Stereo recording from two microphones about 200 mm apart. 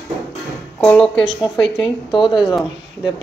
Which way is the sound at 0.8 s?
5° left (ahead or behind).